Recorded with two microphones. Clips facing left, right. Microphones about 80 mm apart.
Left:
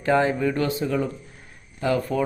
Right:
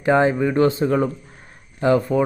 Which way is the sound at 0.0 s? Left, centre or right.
Right.